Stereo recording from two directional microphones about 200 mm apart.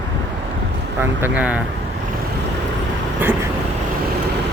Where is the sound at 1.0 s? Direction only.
10° right (ahead or behind).